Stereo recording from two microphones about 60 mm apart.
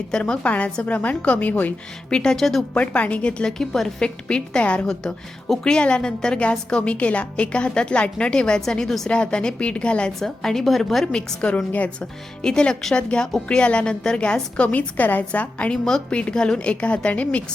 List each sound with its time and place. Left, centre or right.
0.1 s a woman's voice: centre
0.4 s a woman's voice: left
2.0 s a woman's voice: centre
2.7 s a woman's voice: left
3.6 s a woman's voice: centre
4.9 s a woman's voice: centre
10.2 s a woman's voice: centre
11.1 s a woman's voice: centre
15.7 s a woman's voice: centre